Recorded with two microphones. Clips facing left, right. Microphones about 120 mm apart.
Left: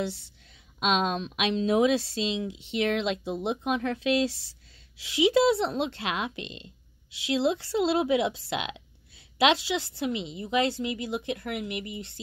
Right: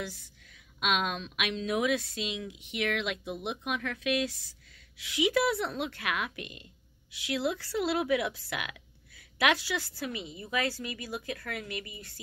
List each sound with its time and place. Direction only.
0.7 s speech: 25° left (ahead or behind)